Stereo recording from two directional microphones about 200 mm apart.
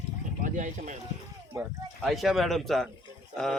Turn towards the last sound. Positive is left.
turn(degrees=5)  # may be behind; listen again after turning